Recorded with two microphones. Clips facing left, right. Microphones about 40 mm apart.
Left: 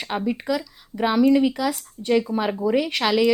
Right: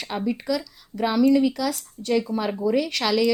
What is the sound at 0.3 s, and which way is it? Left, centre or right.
A woman's voice, centre.